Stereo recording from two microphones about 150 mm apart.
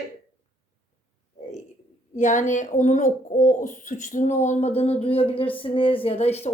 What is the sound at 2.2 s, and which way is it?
A woman's voice, 55° left (ahead or behind).